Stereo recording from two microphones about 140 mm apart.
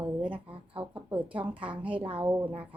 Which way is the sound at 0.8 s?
40° right (ahead or behind).